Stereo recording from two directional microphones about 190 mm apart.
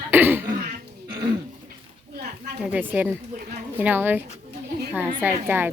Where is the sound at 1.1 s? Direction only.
25° right (ahead or behind).